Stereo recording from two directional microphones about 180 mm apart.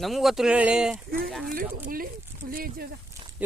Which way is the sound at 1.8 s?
55° right (ahead or behind).